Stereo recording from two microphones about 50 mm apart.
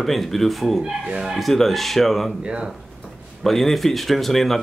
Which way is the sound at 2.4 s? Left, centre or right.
Right.